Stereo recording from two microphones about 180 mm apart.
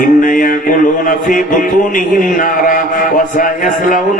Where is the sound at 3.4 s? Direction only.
50° left (ahead or behind).